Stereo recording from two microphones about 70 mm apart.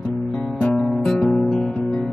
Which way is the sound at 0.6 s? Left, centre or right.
Centre.